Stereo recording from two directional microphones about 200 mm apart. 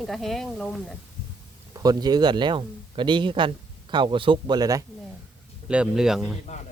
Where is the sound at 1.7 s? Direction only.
20° right (ahead or behind).